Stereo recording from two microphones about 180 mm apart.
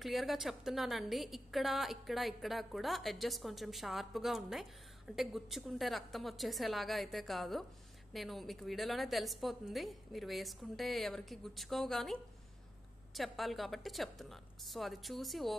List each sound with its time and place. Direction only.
0.0 s a woman's voice: centre (ahead or behind)